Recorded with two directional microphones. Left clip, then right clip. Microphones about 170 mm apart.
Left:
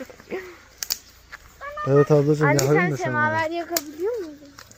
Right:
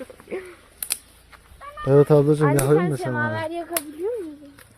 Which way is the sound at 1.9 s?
20° right (ahead or behind).